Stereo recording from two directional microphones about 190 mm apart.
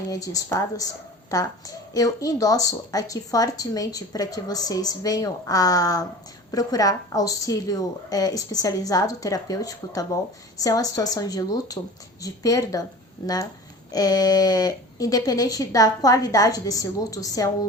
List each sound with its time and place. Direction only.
0.1 s a woman's voice: 20° left (ahead or behind)